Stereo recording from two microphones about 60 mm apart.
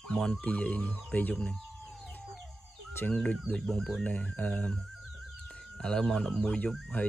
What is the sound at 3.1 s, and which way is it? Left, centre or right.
Speech, left.